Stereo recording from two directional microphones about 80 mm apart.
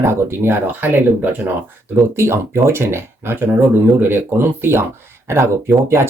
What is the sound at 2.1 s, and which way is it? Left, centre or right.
Speech, right.